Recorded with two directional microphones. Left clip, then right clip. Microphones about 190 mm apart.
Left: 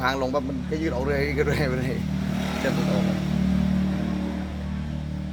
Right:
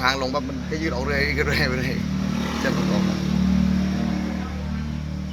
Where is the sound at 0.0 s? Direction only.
50° left (ahead or behind).